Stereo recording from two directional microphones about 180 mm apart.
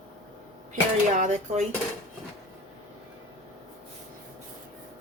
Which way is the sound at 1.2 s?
40° right (ahead or behind).